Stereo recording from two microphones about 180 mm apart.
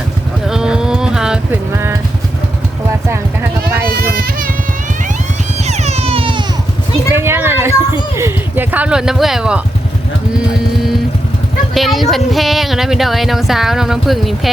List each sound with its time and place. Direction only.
0.4 s livestock: 5° right (ahead or behind)
1.7 s clip-clop: 15° right (ahead or behind)
4.0 s music: 50° right (ahead or behind)
5.6 s music: 40° right (ahead or behind)
7.1 s a sound: 15° right (ahead or behind)
11.7 s a sound: centre (ahead or behind)